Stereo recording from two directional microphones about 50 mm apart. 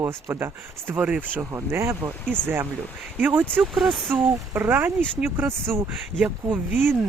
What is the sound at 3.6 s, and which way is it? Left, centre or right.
Speech, centre.